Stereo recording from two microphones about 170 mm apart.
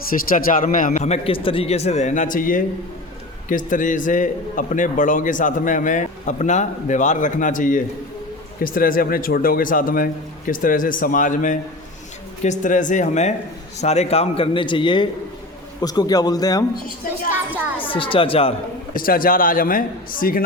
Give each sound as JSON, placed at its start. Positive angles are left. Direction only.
{"t": 0.1, "sound": "a man's voice", "side_deg": 55}
{"t": 17.7, "sound": "a man's voice", "side_deg": 30}
{"t": 18.9, "sound": "a man's voice", "side_deg": 55}